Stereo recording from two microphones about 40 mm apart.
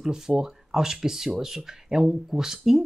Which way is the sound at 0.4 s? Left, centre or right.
Centre.